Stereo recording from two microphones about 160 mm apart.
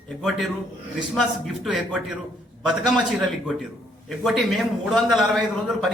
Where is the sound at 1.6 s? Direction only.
Centre (ahead or behind).